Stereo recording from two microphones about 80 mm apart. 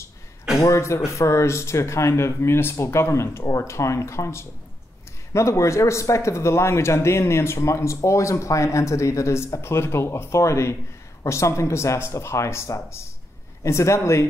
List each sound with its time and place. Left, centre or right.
0.6 s speech: left